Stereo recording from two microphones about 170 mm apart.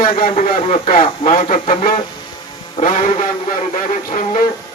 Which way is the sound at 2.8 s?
50° left (ahead or behind).